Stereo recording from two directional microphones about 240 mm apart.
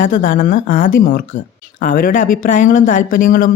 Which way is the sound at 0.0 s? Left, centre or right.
Left.